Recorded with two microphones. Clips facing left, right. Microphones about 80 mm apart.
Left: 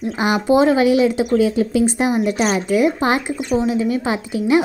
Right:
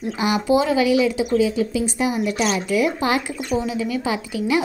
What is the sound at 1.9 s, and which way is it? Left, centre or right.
A woman's voice, left.